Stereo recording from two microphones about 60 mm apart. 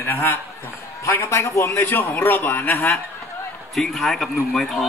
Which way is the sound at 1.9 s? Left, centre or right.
Left.